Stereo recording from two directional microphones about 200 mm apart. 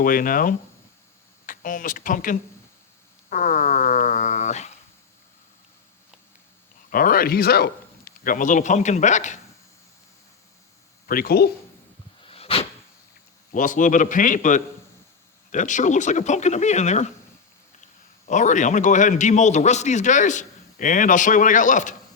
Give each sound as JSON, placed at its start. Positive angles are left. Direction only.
{"t": 0.0, "sound": "speech", "side_deg": 45}
{"t": 6.9, "sound": "a man's voice", "side_deg": 45}
{"t": 11.0, "sound": "speech", "side_deg": 45}
{"t": 12.2, "sound": "a sound", "side_deg": 30}
{"t": 13.5, "sound": "a man's voice", "side_deg": 40}
{"t": 18.3, "sound": "a man's voice", "side_deg": 40}